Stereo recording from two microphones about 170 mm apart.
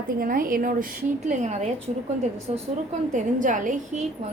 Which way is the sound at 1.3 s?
40° right (ahead or behind).